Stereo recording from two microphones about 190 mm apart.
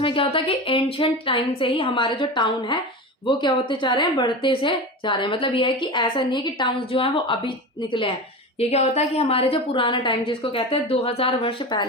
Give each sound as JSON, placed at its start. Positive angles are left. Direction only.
{"t": 0.0, "sound": "a woman's voice", "side_deg": 30}